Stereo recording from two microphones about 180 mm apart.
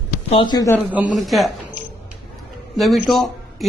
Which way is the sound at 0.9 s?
10° right (ahead or behind).